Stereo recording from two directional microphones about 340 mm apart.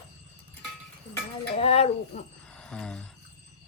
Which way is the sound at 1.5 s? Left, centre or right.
Centre.